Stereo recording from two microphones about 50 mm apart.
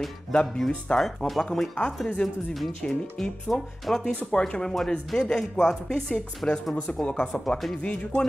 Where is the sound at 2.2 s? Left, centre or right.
Centre.